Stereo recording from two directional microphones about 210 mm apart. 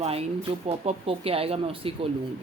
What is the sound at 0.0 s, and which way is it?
Speech, 30° right (ahead or behind).